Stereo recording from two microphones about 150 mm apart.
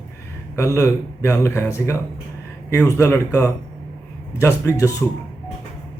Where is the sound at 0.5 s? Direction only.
20° left (ahead or behind).